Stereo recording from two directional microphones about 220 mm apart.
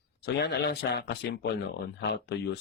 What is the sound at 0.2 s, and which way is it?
Speech, 50° left (ahead or behind).